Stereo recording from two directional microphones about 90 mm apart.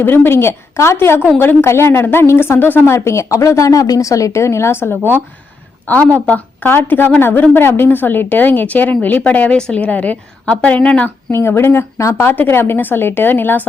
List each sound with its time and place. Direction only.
0.0 s a woman's voice: 25° left (ahead or behind)
11.3 s a woman's voice: 30° left (ahead or behind)